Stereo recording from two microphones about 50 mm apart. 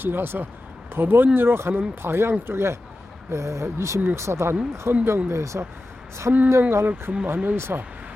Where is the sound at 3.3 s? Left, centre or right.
Right.